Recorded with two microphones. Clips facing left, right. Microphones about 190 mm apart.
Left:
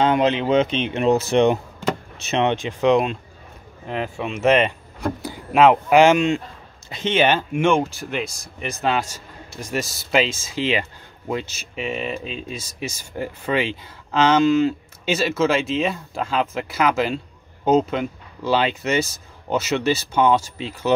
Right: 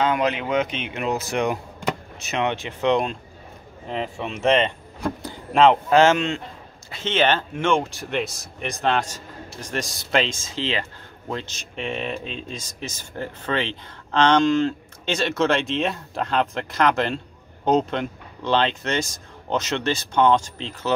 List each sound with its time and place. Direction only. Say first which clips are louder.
0.0 s a man's voice: left 4 dB; 25° left (ahead or behind); by 20.9 s 10° left (ahead or behind)